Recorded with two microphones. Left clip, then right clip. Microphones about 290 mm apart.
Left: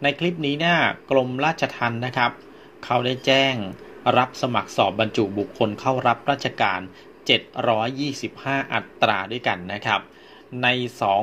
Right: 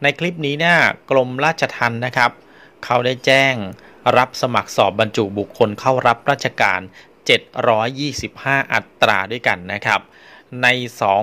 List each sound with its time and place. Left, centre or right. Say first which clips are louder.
0.0 s speech: right 4 dB; right